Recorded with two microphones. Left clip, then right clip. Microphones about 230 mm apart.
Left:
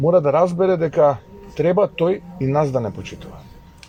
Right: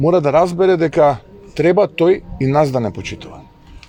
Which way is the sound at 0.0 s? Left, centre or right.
Right.